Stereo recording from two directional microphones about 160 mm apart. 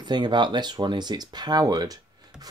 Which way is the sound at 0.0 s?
30° right (ahead or behind).